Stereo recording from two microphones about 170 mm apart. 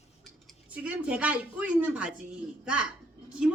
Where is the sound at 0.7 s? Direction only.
10° right (ahead or behind).